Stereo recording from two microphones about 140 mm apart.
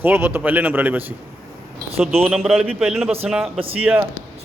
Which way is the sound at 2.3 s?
Centre (ahead or behind).